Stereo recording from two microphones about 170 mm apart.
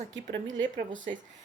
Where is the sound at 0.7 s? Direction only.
50° right (ahead or behind).